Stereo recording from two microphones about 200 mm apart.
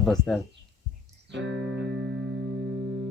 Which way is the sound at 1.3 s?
70° right (ahead or behind).